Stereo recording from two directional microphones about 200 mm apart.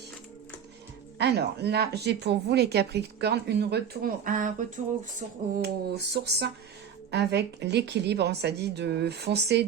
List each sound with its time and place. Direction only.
1.2 s speech: 55° right (ahead or behind)
5.2 s a sound: 40° right (ahead or behind)
5.6 s speech: 55° right (ahead or behind)